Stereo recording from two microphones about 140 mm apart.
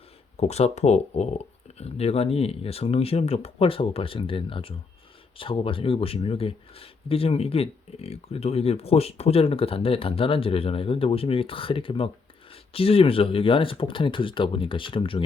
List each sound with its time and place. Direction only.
0.3 s speech: 50° left (ahead or behind)